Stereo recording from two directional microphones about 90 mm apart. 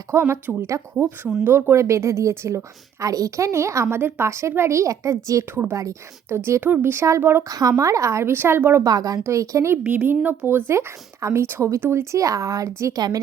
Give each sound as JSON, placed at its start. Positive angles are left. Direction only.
{"t": 0.1, "sound": "a woman's voice", "side_deg": -30}
{"t": 5.5, "sound": "speech", "side_deg": -25}
{"t": 5.7, "sound": "speech", "side_deg": -35}
{"t": 7.4, "sound": "a woman's voice", "side_deg": -40}
{"t": 8.8, "sound": "a woman's voice", "side_deg": -45}
{"t": 9.7, "sound": "a woman's voice", "side_deg": -20}